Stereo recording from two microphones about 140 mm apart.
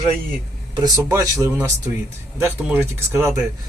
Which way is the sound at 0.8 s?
20° right (ahead or behind).